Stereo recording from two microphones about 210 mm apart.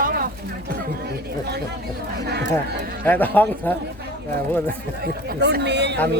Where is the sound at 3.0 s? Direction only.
10° left (ahead or behind).